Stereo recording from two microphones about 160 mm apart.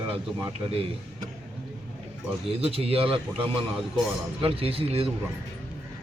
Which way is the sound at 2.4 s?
35° right (ahead or behind).